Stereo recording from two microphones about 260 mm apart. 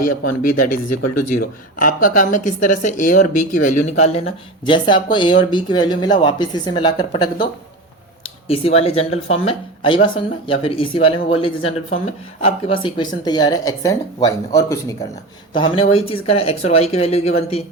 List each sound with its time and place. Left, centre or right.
0.3 s speech: left